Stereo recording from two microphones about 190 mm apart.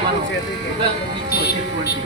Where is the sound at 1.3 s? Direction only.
60° left (ahead or behind).